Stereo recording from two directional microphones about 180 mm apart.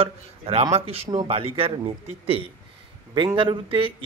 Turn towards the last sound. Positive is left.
turn(degrees=-30)  # may be behind; listen again after turning